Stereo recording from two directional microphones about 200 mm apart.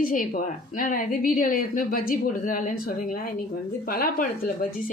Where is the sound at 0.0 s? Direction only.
40° left (ahead or behind).